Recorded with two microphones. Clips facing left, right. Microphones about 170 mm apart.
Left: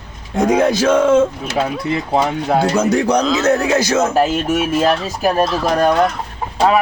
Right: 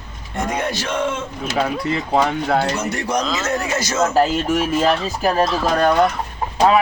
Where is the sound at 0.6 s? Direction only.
90° left.